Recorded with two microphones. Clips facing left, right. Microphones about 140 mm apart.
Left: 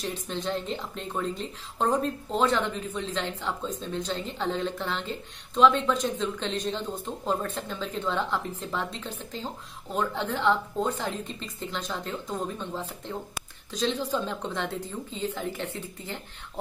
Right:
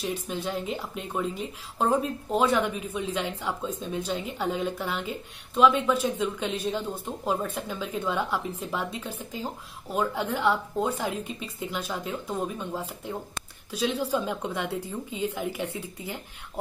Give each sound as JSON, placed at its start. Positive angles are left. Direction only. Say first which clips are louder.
{"t": 0.0, "sound": "speech", "louder": "right 1 dB", "side_deg": -10}